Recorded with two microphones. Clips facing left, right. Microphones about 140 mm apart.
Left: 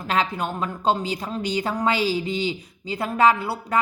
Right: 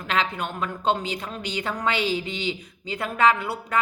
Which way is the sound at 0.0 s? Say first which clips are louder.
Left 2 dB; 35° left (ahead or behind).